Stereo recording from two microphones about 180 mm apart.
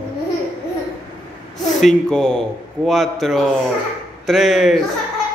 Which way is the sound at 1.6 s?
Centre (ahead or behind).